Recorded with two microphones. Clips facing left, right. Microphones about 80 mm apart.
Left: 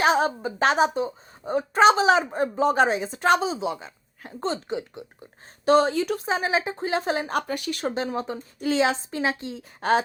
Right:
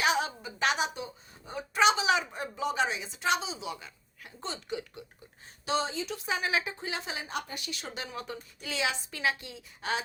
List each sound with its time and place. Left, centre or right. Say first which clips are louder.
0.0 s a sound: left 8 dB; left
0.4 s a woman's voice: left 9 dB; left
3.7 s a woman's voice: left 8 dB; left
5.6 s speech: left 12 dB; left
6.2 s speech: left 6 dB; left
7.9 s a woman's voice: left 11 dB; left